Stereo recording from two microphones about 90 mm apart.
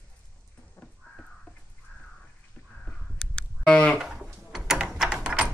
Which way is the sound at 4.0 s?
10° right (ahead or behind).